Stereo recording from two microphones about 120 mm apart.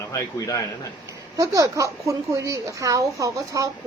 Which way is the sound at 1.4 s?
30° right (ahead or behind).